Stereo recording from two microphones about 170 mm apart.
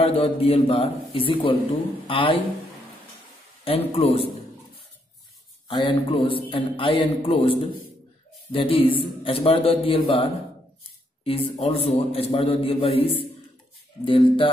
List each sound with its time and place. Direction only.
0.0 s a man's voice: 35° left (ahead or behind)
3.6 s a man's voice: 35° left (ahead or behind)
5.7 s a man's voice: 30° left (ahead or behind)
11.2 s a man's voice: 35° left (ahead or behind)